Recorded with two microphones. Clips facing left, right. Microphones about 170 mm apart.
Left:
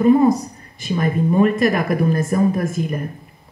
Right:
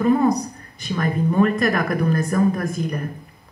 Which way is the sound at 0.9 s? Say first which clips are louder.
Left 3 dB; 20° left (ahead or behind).